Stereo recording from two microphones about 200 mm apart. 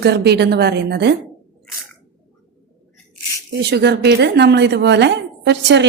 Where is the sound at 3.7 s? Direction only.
55° right (ahead or behind).